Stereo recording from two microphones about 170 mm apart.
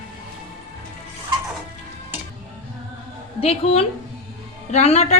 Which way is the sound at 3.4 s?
35° left (ahead or behind).